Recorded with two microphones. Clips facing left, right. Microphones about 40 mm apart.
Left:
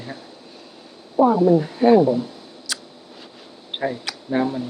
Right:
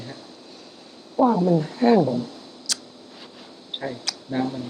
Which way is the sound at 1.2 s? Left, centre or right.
Centre.